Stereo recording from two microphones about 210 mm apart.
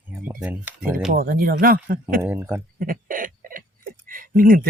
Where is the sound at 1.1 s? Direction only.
45° right (ahead or behind).